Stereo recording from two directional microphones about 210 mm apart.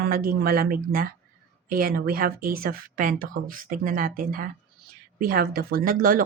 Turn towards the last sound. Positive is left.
turn(degrees=-40)  # may be behind; listen again after turning